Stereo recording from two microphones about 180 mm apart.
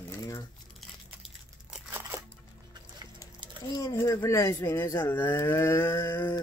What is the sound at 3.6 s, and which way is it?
Speech, 20° left (ahead or behind).